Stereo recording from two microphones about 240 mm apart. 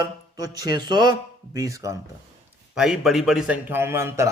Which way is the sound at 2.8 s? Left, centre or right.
Centre.